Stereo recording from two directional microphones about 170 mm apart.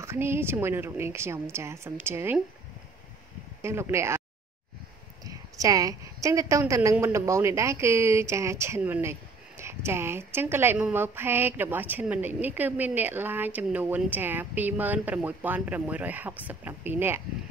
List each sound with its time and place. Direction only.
0.0 s a woman's voice: 15° right (ahead or behind)
3.6 s a woman's voice: 15° right (ahead or behind)
5.2 s a woman's voice: 20° right (ahead or behind)